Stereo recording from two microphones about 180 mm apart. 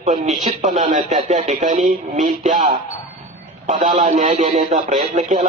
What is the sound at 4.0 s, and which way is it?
Speech, 45° right (ahead or behind).